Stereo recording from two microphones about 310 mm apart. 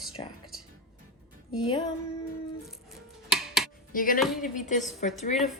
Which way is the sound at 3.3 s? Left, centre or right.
Centre.